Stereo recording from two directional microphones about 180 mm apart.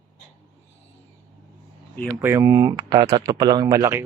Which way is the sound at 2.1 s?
15° right (ahead or behind).